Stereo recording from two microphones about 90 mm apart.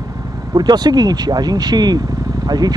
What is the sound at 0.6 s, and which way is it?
Speech, 50° right (ahead or behind).